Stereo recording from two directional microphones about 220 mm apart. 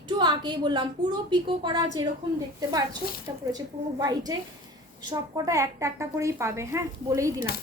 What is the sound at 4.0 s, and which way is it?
A woman's voice, 15° right (ahead or behind).